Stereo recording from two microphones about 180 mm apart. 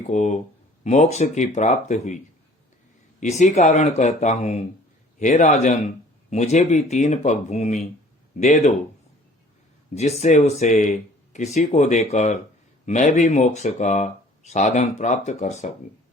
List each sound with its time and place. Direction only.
0.0 s a man's voice: 40° left (ahead or behind)
3.2 s a man's voice: 40° left (ahead or behind)
9.9 s speech: 35° left (ahead or behind)